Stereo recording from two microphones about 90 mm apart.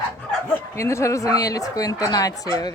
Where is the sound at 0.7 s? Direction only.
35° left (ahead or behind).